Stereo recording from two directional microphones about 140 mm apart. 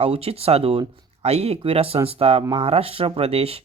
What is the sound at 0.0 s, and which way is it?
Speech, 45° right (ahead or behind).